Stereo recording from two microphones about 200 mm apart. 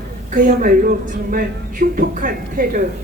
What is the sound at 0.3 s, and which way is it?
A woman's voice, 40° right (ahead or behind).